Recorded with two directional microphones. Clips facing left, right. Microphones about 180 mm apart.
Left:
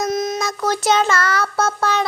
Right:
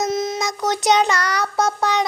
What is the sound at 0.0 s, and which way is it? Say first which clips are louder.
Child singing: left 1 dB; 25° right (ahead or behind).